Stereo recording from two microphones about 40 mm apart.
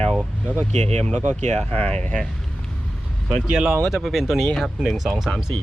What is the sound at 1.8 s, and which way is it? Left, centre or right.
Speech, left.